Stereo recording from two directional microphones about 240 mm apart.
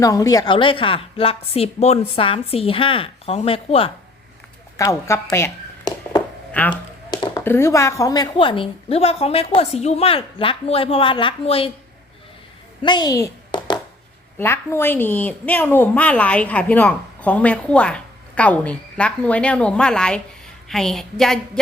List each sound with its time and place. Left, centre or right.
0.0 s speech: centre
4.8 s speech: centre
12.8 s a sound: centre
14.3 s a woman's voice: centre